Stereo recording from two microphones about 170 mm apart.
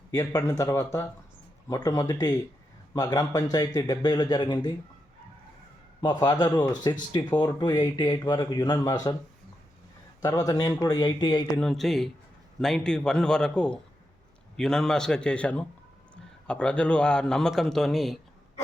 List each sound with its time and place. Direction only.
0.2 s speech: 15° left (ahead or behind)
6.0 s speech: 25° left (ahead or behind)
10.2 s speech: 20° left (ahead or behind)
11.6 s a man's voice: centre (ahead or behind)